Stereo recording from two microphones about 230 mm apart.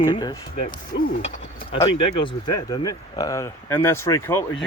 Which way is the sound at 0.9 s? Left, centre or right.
Left.